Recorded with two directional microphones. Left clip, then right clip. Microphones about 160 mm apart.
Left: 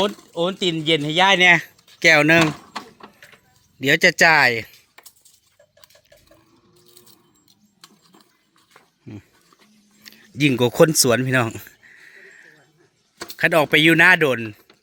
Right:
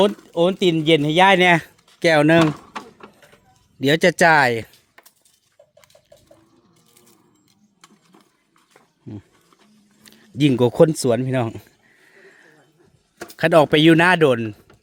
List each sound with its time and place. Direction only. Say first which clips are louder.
0.3 s speech: right 4 dB; 70° right (ahead or behind)
2.0 s speech: left 1 dB; 35° right (ahead or behind)
3.2 s a sound: left 3 dB; 90° right
3.8 s speech: left 1 dB; 35° right (ahead or behind)
10.0 s a sound: even; 30° right (ahead or behind)
13.3 s speech: right 2 dB; 35° right (ahead or behind)